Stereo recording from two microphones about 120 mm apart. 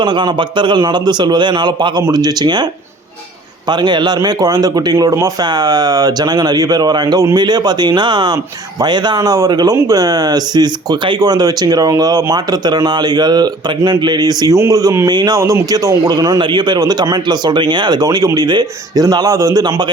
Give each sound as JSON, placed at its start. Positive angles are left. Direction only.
{"t": 0.0, "sound": "speech", "side_deg": -40}
{"t": 3.7, "sound": "speech", "side_deg": -40}